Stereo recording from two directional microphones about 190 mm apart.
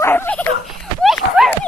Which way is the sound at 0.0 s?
10° left (ahead or behind).